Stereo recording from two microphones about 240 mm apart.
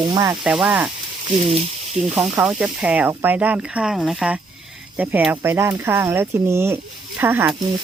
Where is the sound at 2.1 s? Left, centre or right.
Centre.